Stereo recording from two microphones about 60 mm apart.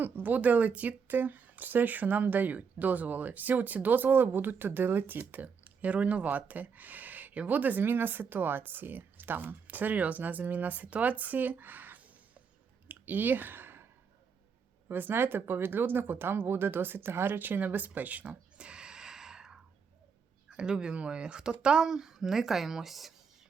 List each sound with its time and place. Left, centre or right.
0.0 s speech: right
5.2 s speech: right
12.9 s a sound: right
14.8 s a woman's voice: right; by 23.1 s centre